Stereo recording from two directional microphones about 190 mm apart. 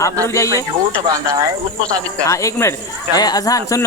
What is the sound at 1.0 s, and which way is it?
Speech, 20° right (ahead or behind).